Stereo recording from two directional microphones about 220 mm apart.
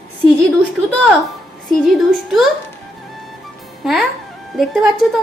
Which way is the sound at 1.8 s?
Centre (ahead or behind).